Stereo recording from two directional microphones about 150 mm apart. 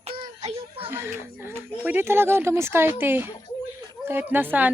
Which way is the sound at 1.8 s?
15° right (ahead or behind).